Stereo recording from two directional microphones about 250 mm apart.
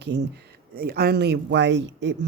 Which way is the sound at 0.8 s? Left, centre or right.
Right.